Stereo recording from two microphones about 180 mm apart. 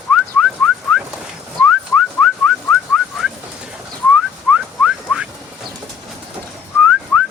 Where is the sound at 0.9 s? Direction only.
5° right (ahead or behind).